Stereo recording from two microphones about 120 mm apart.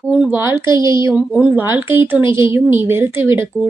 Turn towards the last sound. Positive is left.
turn(degrees=-20)  # may be behind; listen again after turning